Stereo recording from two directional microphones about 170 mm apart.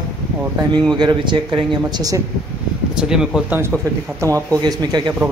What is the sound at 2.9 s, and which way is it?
Speech, 5° right (ahead or behind).